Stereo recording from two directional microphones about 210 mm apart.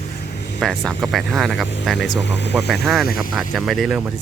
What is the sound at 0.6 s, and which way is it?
Speech, centre (ahead or behind).